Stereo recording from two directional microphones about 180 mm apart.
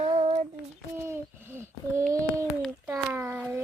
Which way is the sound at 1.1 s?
15° right (ahead or behind).